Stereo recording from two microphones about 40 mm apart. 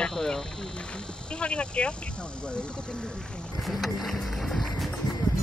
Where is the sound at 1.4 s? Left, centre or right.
Left.